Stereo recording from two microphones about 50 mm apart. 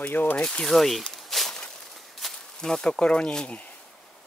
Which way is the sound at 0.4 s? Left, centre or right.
Centre.